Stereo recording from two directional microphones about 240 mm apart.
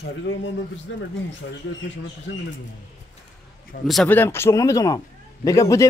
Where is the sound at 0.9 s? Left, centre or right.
Left.